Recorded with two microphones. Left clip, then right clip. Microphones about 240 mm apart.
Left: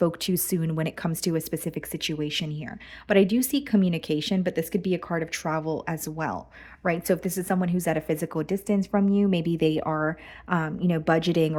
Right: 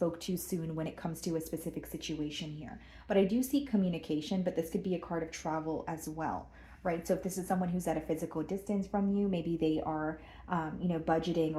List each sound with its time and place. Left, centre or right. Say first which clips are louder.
0.0 s speech: left 9 dB; left